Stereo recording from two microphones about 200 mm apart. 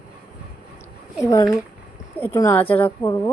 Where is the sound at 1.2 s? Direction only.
15° left (ahead or behind).